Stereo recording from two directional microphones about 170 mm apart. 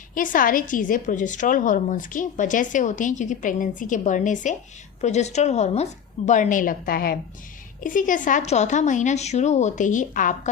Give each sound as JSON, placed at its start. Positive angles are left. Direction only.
{"t": 0.1, "sound": "a woman's voice", "side_deg": 55}
{"t": 7.9, "sound": "speech", "side_deg": 50}